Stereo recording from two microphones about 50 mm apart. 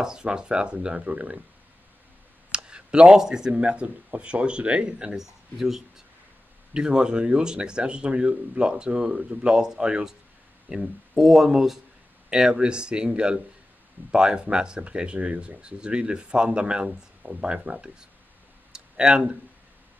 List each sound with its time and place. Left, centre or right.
0.0 s speech: centre
2.5 s speech: centre
11.1 s speech: centre
18.7 s a sound: centre